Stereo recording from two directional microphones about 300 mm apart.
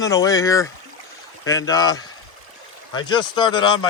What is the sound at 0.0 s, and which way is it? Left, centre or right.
Speech, centre.